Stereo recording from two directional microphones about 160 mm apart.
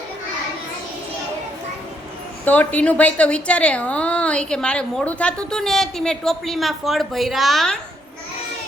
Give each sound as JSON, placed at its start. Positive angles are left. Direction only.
{"t": 2.4, "sound": "a woman's voice", "side_deg": 10}